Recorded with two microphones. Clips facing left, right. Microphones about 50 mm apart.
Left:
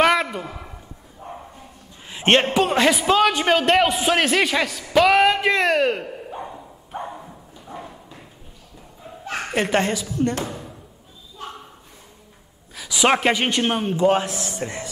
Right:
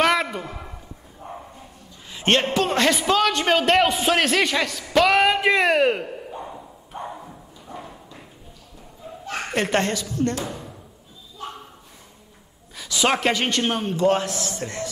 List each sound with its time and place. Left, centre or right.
0.0 s a sound: centre
2.0 s a man's voice: left; by 6.0 s centre
7.1 s dog: centre
9.2 s a man's voice: centre
12.7 s a man's voice: centre